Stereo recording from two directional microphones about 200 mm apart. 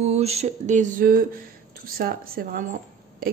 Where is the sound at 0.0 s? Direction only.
30° right (ahead or behind).